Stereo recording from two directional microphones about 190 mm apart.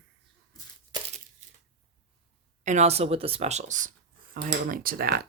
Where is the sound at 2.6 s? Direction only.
35° right (ahead or behind).